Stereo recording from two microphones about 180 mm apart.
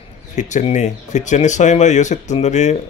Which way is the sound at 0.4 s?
40° left (ahead or behind).